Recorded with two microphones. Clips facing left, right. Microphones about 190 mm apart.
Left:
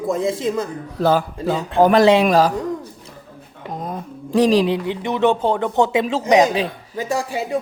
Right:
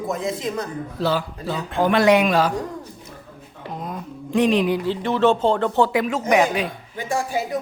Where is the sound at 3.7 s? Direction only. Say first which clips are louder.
Left 3 dB; 45° left (ahead or behind).